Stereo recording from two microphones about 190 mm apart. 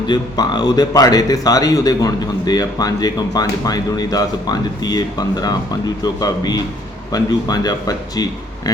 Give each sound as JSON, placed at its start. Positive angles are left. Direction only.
{"t": 0.1, "sound": "speech", "side_deg": 20}